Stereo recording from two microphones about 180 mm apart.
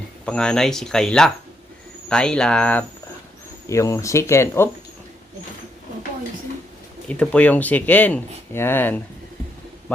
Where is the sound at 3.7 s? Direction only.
15° left (ahead or behind).